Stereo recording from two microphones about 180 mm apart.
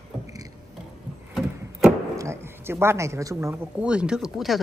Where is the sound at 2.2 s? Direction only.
15° right (ahead or behind).